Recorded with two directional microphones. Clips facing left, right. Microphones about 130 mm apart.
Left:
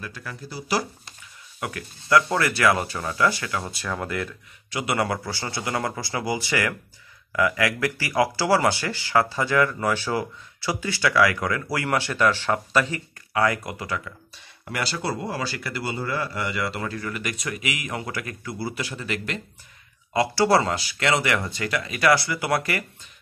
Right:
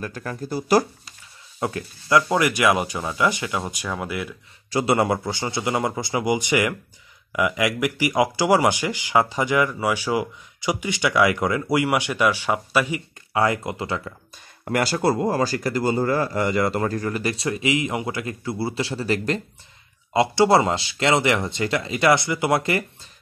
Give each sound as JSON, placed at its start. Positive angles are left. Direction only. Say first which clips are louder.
{"t": 0.0, "sound": "speech", "louder": "right 6 dB", "side_deg": -45}
{"t": 1.6, "sound": "speech", "louder": "right 6 dB", "side_deg": -30}
{"t": 4.6, "sound": "a man's voice", "louder": "right 7 dB", "side_deg": -35}
{"t": 4.9, "sound": "speech", "louder": "right 1 dB", "side_deg": -20}
{"t": 13.3, "sound": "speech", "louder": "right 2 dB", "side_deg": -25}
{"t": 14.6, "sound": "speech", "louder": "right 7 dB", "side_deg": -50}
{"t": 20.1, "sound": "speech", "louder": "right 3 dB", "side_deg": -25}